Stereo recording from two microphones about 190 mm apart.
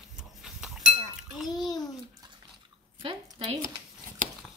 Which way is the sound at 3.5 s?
35° right (ahead or behind).